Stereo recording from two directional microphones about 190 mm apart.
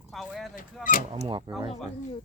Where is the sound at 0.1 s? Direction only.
Centre (ahead or behind).